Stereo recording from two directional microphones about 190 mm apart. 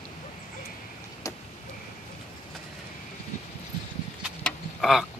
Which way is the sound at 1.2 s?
15° left (ahead or behind).